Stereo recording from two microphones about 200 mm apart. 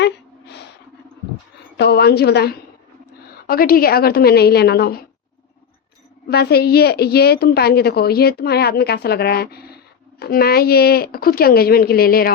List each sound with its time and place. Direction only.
0.0 s a sound: 55° left (ahead or behind)
1.7 s a woman's voice: 55° left (ahead or behind)
6.2 s a woman's voice: 50° left (ahead or behind)